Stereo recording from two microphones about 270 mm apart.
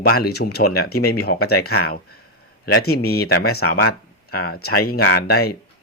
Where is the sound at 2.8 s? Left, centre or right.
Left.